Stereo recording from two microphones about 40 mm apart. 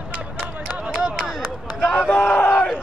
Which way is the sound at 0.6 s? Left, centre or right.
Right.